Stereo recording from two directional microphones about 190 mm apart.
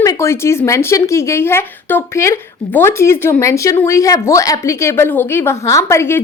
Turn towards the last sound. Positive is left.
turn(degrees=15)  # may be behind; listen again after turning